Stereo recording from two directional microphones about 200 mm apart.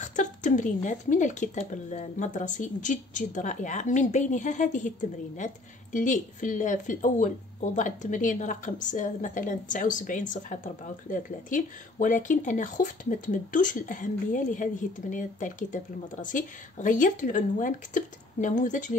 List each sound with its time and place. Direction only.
0.0 s speech: 40° left (ahead or behind)